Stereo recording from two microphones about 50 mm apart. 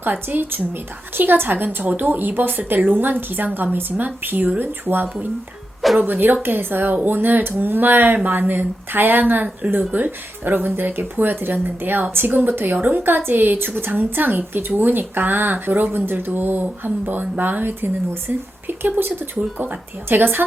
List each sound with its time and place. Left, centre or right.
0.0 s a woman's voice: right